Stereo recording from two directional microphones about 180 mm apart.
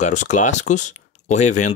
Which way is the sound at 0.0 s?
40° left (ahead or behind).